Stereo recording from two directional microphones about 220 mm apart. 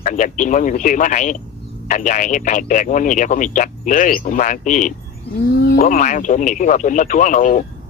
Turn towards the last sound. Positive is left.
turn(degrees=35)  # may be behind; listen again after turning